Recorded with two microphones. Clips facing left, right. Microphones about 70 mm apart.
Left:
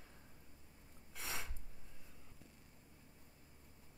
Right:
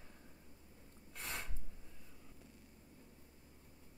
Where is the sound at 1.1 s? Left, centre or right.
Centre.